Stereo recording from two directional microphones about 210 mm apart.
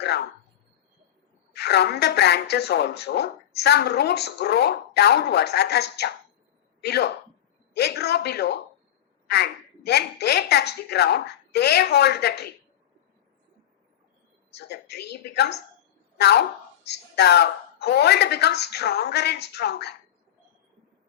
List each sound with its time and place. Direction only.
1.5 s a woman's voice: 50° left (ahead or behind)
14.5 s a woman's voice: 50° left (ahead or behind)